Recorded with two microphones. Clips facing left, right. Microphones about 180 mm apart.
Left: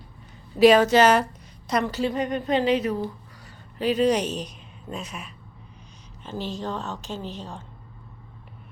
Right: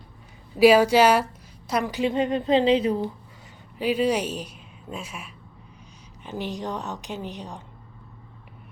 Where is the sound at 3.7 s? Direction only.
10° right (ahead or behind).